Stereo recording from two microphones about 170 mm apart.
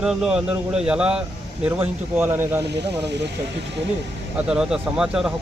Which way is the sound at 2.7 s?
90° right.